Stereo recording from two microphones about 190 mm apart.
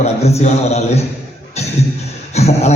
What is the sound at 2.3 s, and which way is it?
Speech, 35° left (ahead or behind).